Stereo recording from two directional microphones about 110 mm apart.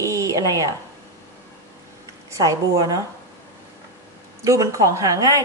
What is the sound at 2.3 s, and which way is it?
Speech, 30° right (ahead or behind).